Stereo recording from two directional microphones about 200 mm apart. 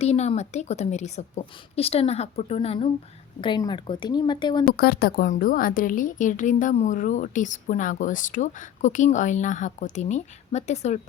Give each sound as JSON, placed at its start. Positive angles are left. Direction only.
{"t": 0.0, "sound": "a woman's voice", "side_deg": 30}
{"t": 4.8, "sound": "a woman's voice", "side_deg": 50}